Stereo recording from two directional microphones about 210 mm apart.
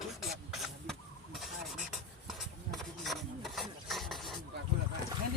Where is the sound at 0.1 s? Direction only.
Centre (ahead or behind).